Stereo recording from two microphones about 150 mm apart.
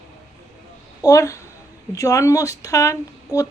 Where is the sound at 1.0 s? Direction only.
20° left (ahead or behind).